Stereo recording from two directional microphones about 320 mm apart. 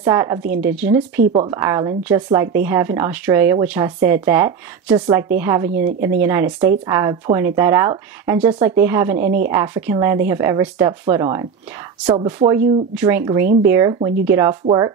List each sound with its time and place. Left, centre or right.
0.0 s speech: centre
0.4 s speech: right
1.3 s speech: centre
9.2 s a woman's voice: right
9.5 s speech: centre